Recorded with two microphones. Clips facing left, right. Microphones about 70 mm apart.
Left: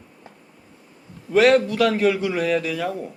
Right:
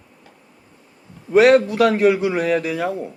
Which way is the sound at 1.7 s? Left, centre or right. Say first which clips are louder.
Right 4 dB; right.